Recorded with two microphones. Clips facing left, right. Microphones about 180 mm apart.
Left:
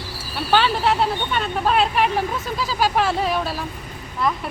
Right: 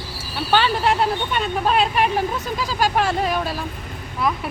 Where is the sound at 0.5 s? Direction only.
Centre (ahead or behind).